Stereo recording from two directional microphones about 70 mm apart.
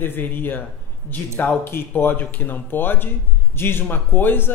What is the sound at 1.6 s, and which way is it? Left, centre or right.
A man's voice, left.